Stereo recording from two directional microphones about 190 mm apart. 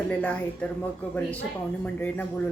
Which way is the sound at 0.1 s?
5° left (ahead or behind).